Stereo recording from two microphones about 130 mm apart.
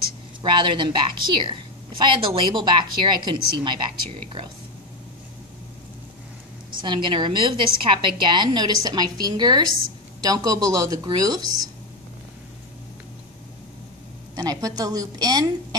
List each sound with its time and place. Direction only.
0.4 s a woman's voice: 35° right (ahead or behind)
6.8 s a woman's voice: 35° right (ahead or behind)
14.3 s speech: 30° right (ahead or behind)